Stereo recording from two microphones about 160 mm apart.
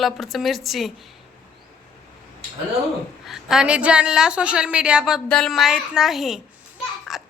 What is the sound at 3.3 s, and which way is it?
A woman's voice, 5° right (ahead or behind).